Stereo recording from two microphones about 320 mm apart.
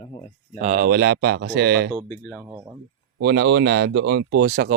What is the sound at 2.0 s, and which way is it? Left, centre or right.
Speech, centre.